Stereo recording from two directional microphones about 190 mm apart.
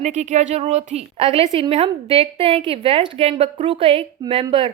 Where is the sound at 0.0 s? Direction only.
40° right (ahead or behind).